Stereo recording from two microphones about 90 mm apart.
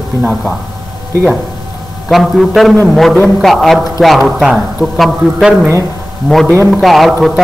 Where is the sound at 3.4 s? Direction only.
Centre (ahead or behind).